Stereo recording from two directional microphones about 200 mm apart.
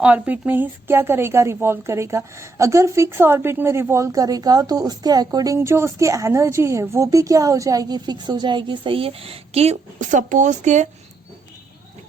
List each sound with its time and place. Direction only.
0.0 s speech: 5° right (ahead or behind); by 10.8 s 35° right (ahead or behind)